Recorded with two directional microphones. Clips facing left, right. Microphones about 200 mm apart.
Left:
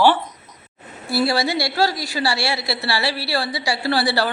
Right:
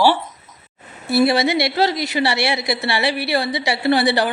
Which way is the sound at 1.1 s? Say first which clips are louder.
Right 4 dB; 20° right (ahead or behind).